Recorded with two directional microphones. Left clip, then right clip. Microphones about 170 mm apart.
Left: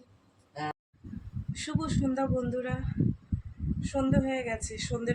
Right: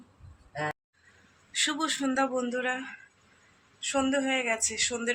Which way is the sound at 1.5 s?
15° left (ahead or behind).